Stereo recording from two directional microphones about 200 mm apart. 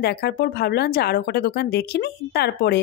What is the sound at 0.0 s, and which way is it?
Speech, 50° left (ahead or behind).